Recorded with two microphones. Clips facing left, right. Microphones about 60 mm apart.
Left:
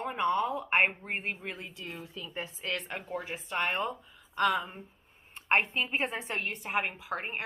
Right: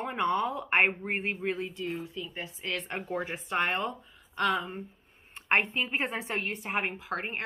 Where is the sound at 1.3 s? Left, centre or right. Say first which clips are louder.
Right 6 dB; centre.